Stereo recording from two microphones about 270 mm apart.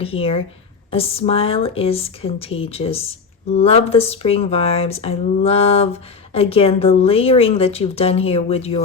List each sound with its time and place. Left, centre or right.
0.0 s speech: left